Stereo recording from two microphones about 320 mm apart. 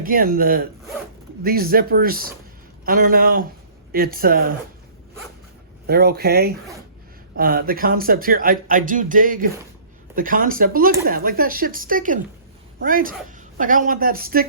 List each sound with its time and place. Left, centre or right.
0.0 s speech: right
5.9 s speech: right